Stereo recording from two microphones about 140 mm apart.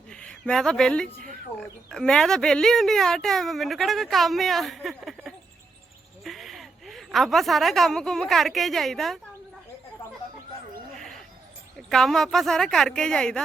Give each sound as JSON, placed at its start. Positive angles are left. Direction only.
{"t": 0.1, "sound": "a woman's voice", "side_deg": 5}
{"t": 10.9, "sound": "a sound", "side_deg": 5}
{"t": 11.9, "sound": "speech", "side_deg": 0}